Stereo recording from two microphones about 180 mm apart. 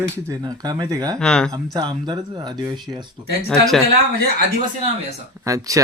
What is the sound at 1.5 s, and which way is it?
Speech, 25° right (ahead or behind).